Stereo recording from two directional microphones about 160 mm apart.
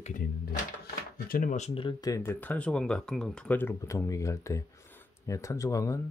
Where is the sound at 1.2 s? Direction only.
60° left (ahead or behind).